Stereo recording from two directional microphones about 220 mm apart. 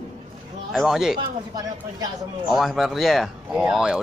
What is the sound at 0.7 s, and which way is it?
Speech, centre (ahead or behind).